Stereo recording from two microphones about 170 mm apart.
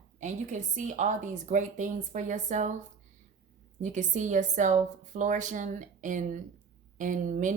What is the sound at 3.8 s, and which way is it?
A woman's voice, 45° right (ahead or behind).